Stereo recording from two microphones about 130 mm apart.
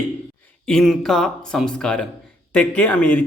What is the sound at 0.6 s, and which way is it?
Speech, centre (ahead or behind).